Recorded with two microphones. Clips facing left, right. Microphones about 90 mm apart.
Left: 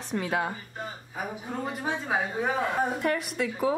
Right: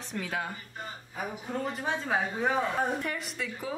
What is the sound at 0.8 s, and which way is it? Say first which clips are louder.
Speech: even; 10° left (ahead or behind).